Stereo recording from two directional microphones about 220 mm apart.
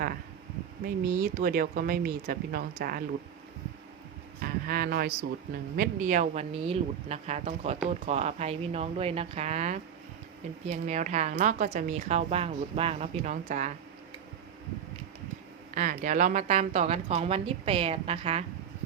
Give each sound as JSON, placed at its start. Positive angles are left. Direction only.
{"t": 0.9, "sound": "a woman's voice", "side_deg": -40}
{"t": 4.4, "sound": "a woman's voice", "side_deg": -40}
{"t": 15.7, "sound": "a woman's voice", "side_deg": -35}